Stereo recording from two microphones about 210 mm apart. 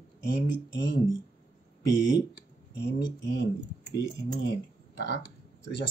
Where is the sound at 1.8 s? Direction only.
60° left (ahead or behind).